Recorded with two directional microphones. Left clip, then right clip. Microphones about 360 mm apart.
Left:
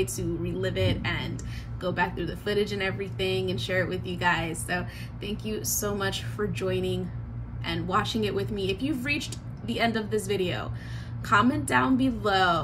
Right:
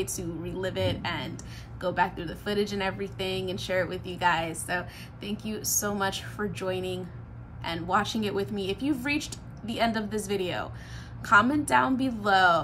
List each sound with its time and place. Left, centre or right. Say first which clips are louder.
0.0 s a woman's voice: left 4 dB; centre